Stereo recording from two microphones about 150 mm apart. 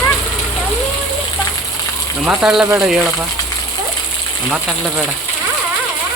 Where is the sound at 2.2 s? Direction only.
10° right (ahead or behind).